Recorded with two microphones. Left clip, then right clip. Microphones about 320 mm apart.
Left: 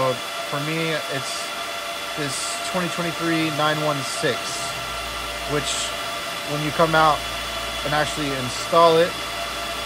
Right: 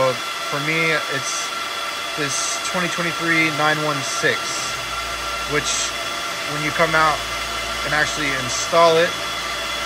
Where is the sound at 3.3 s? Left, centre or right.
Centre.